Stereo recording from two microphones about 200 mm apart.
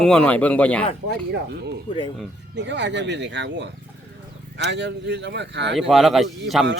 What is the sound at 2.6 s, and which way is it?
Speech, 60° right (ahead or behind).